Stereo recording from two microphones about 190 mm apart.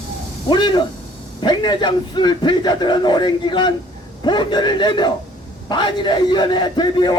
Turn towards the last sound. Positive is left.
turn(degrees=20)  # may be behind; listen again after turning